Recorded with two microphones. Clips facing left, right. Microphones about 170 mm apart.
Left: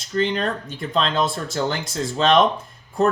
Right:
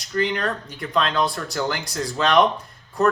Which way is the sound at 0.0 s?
25° left (ahead or behind).